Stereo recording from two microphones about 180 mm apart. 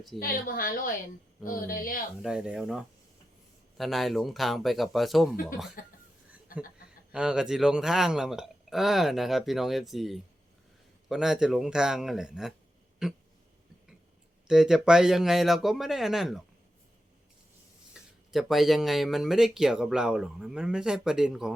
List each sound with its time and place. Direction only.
0.2 s speech: 55° left (ahead or behind)
2.2 s speech: 5° right (ahead or behind)
5.8 s speech: 50° left (ahead or behind)
7.1 s speech: 5° right (ahead or behind)
14.4 s speech: 5° right (ahead or behind)
17.9 s speech: centre (ahead or behind)